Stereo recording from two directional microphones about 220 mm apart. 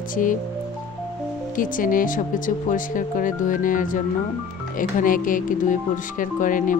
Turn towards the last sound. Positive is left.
turn(degrees=35)  # may be behind; listen again after turning